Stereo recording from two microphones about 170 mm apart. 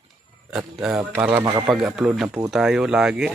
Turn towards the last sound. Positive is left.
turn(degrees=-5)  # may be behind; listen again after turning